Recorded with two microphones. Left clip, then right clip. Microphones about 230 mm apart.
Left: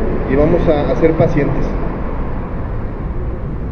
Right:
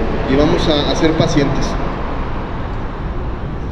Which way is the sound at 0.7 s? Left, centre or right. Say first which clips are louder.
Left 2 dB; right.